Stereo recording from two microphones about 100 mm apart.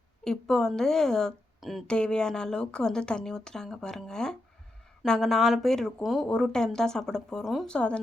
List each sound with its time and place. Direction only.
0.3 s a woman's voice: 5° left (ahead or behind)